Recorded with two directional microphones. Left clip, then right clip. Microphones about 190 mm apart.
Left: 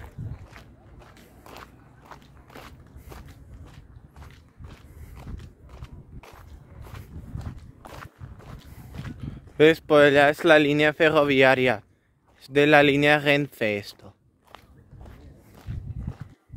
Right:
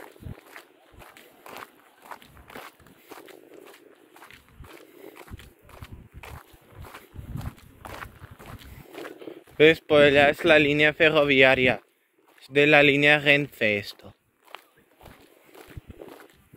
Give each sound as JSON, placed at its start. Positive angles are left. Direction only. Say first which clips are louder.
{"t": 0.9, "sound": "walk", "louder": "right 3 dB", "side_deg": 0}
{"t": 1.6, "sound": "walk", "louder": "right 3 dB", "side_deg": -15}
{"t": 3.7, "sound": "walk", "louder": "right 4 dB", "side_deg": -20}
{"t": 6.3, "sound": "walk", "louder": "right 2 dB", "side_deg": -20}
{"t": 7.3, "sound": "walk", "louder": "right 4 dB", "side_deg": -5}
{"t": 8.0, "sound": "walk", "louder": "right 3 dB", "side_deg": -15}
{"t": 9.6, "sound": "speech", "louder": "even", "side_deg": 30}
{"t": 14.5, "sound": "walk", "louder": "right 4 dB", "side_deg": -10}